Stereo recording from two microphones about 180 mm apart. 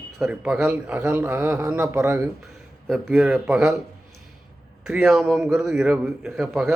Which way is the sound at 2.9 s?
Centre (ahead or behind).